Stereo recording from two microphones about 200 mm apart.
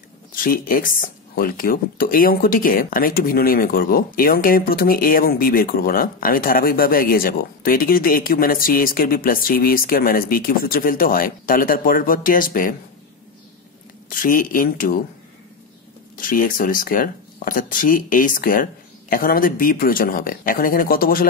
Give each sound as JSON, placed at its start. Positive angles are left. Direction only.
{"t": 0.4, "sound": "speech", "side_deg": 45}
{"t": 14.0, "sound": "speech", "side_deg": 45}
{"t": 16.2, "sound": "speech", "side_deg": 45}